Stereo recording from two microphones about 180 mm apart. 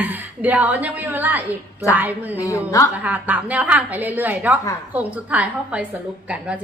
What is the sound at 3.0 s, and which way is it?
Speech, 10° right (ahead or behind).